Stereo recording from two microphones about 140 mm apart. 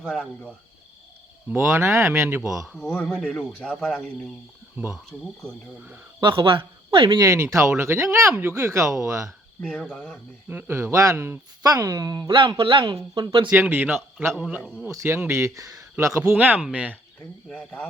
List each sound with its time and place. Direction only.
0.0 s speech: 5° left (ahead or behind)
1.5 s speech: 15° right (ahead or behind)
2.6 s speech: 5° left (ahead or behind)
6.1 s speech: 35° right (ahead or behind)
7.2 s speech: 20° right (ahead or behind)
9.6 s speech: 10° left (ahead or behind)
10.5 s speech: 15° right (ahead or behind); by 13.5 s 35° right (ahead or behind)
13.5 s speech: 15° right (ahead or behind)
14.6 s speech: centre (ahead or behind)
14.9 s speech: 20° right (ahead or behind)
17.5 s speech: 10° left (ahead or behind)